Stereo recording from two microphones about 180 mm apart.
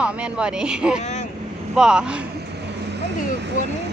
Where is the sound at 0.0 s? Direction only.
5° right (ahead or behind).